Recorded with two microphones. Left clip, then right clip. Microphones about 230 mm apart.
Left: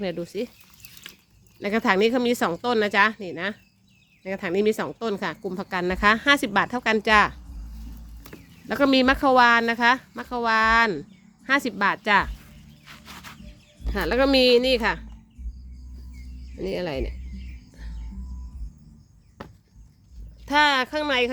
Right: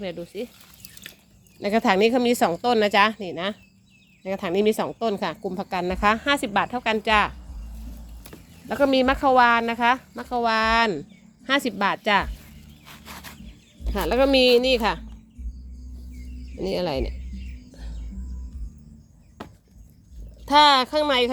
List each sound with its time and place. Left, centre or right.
0.0 s speech: centre
1.6 s a woman's voice: centre
8.6 s a woman's voice: centre
12.8 s wild animals: centre
13.9 s a woman's voice: centre
16.6 s speech: centre
20.4 s a woman's voice: centre